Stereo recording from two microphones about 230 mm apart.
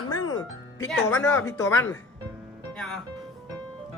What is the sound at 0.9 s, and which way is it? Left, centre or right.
Speech, centre.